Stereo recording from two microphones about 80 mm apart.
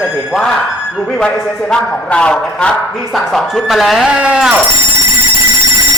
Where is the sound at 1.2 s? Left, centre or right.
Centre.